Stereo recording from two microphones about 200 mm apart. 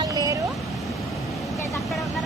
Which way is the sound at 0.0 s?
15° right (ahead or behind).